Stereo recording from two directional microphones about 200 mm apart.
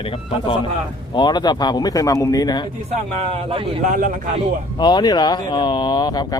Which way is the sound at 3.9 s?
40° right (ahead or behind).